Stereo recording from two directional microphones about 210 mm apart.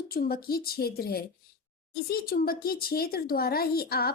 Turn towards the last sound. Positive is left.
turn(degrees=45)  # may be behind; listen again after turning